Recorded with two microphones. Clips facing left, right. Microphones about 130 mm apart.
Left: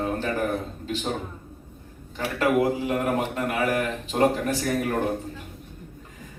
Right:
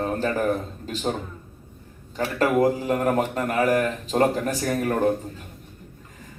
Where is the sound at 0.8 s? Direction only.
40° right (ahead or behind).